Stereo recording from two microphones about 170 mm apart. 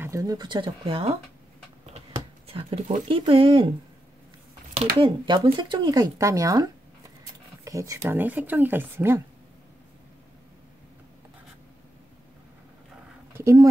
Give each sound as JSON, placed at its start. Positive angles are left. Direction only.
{"t": 0.0, "sound": "speech", "side_deg": -20}
{"t": 2.1, "sound": "a sound", "side_deg": -30}
{"t": 3.1, "sound": "speech", "side_deg": -30}
{"t": 4.9, "sound": "speech", "side_deg": -30}
{"t": 13.3, "sound": "speech", "side_deg": -15}